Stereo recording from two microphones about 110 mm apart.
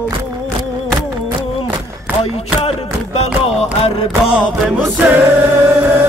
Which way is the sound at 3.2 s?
65° left (ahead or behind).